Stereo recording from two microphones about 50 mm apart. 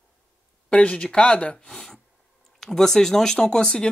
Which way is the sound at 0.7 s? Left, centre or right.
Left.